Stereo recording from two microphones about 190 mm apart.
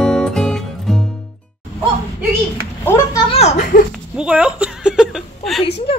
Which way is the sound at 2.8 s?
15° left (ahead or behind).